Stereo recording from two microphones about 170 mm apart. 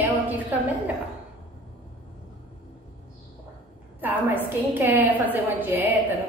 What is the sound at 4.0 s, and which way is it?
A woman's voice, 10° right (ahead or behind).